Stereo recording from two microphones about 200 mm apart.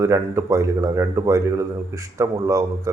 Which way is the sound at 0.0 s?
15° right (ahead or behind).